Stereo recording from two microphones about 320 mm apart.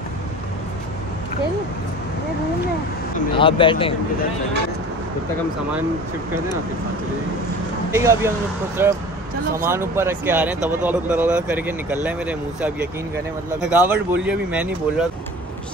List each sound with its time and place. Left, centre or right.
3.3 s speech: centre
7.9 s speech: centre